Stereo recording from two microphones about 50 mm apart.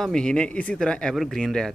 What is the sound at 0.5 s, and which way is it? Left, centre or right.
Speech, left.